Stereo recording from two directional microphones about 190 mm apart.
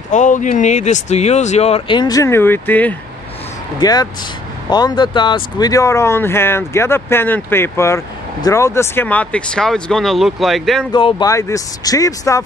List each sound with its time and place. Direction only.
0.1 s speech: 40° left (ahead or behind); by 3.0 s 10° left (ahead or behind)
3.8 s speech: 20° left (ahead or behind); by 10.9 s centre (ahead or behind)
10.9 s speech: 25° left (ahead or behind)